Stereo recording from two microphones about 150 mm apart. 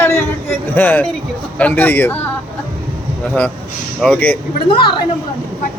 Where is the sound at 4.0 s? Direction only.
10° left (ahead or behind).